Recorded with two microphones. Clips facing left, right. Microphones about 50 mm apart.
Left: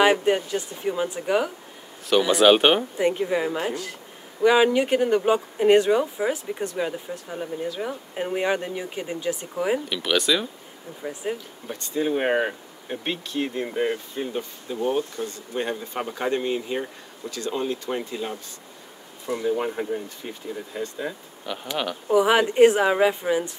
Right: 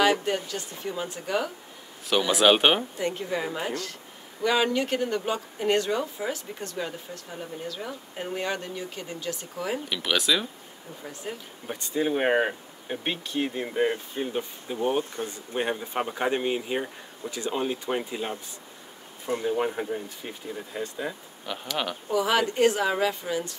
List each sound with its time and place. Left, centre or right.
0.0 s speech: left
2.0 s speech: centre
3.0 s speech: centre
3.4 s speech: centre; by 9.8 s left
9.8 s speech: centre
11.0 s speech: left
11.6 s speech: centre
14.7 s speech: right
19.5 s speech: centre
22.1 s speech: centre